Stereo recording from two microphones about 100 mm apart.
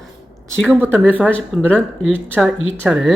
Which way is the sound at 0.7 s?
20° right (ahead or behind).